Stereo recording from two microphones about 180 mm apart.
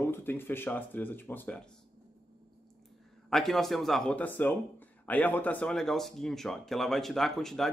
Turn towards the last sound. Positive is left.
turn(degrees=0)  # may be behind; listen again after turning